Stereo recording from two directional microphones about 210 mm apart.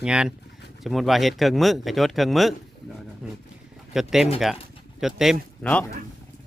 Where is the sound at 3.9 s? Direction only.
Centre (ahead or behind).